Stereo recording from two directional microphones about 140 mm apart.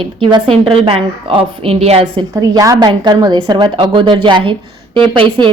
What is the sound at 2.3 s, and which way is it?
A woman's voice, 25° right (ahead or behind).